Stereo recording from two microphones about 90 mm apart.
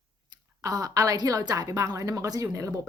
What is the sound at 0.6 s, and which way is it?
A woman's voice, 40° right (ahead or behind).